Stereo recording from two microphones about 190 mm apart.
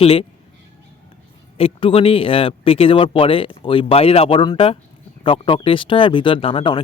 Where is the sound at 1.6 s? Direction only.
30° left (ahead or behind).